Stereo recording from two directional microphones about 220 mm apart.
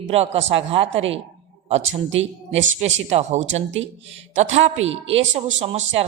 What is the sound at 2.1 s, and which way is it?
Speech, 60° right (ahead or behind).